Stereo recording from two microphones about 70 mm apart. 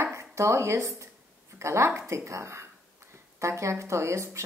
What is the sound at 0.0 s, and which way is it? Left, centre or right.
Speech, right.